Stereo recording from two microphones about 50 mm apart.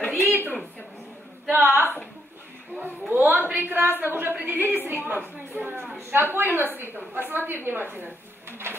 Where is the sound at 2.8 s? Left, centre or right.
Right.